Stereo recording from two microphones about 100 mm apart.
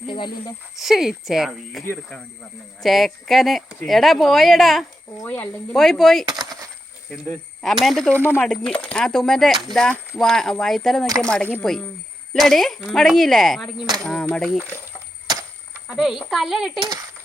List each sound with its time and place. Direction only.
0.8 s speech: 5° right (ahead or behind)
2.8 s speech: centre (ahead or behind)
5.2 s speech: 20° left (ahead or behind)
5.7 s speech: 5° left (ahead or behind)
7.6 s speech: centre (ahead or behind)
15.9 s speech: 5° right (ahead or behind)